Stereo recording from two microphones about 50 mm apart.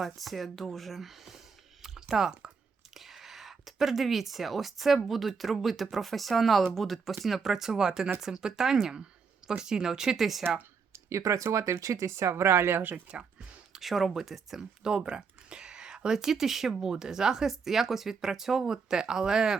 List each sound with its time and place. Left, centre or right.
0.0 s speech: centre
1.8 s typing: centre
2.9 s a sound: centre
5.0 s speech: centre
10.9 s speech: right
13.1 s speech: right
13.7 s speech: centre
14.8 s speech: centre